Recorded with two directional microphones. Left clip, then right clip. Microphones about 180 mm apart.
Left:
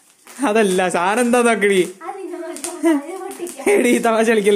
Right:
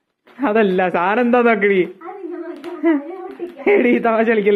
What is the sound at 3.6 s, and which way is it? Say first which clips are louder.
Speech: right 1 dB; 20° left (ahead or behind).